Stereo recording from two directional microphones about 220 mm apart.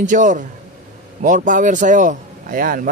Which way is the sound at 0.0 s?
35° right (ahead or behind).